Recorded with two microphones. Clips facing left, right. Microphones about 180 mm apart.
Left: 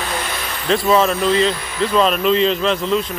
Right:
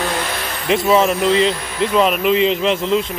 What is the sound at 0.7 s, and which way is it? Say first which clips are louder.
Speech: right 1 dB; 15° right (ahead or behind).